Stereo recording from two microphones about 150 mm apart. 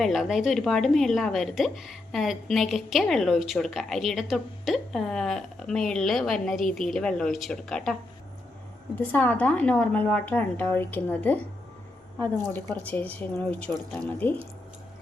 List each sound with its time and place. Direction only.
0.0 s a woman's voice: centre (ahead or behind)
9.0 s speech: 10° left (ahead or behind)